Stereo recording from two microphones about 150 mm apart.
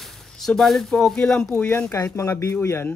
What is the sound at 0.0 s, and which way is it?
Speech, 5° left (ahead or behind).